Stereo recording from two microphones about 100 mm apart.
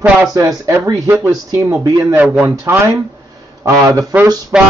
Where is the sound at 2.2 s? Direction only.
5° right (ahead or behind).